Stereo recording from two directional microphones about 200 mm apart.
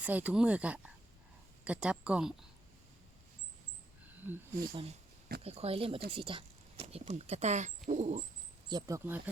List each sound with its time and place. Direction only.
0.0 s speech: 5° right (ahead or behind)
4.7 s speech: 30° right (ahead or behind)
7.9 s dog: 35° right (ahead or behind)
8.7 s speech: 15° right (ahead or behind)